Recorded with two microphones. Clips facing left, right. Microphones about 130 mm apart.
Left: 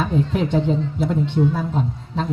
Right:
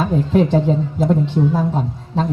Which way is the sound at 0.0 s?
40° right (ahead or behind).